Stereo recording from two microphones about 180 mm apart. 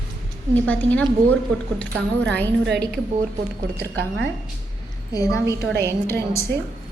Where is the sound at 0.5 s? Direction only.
10° left (ahead or behind).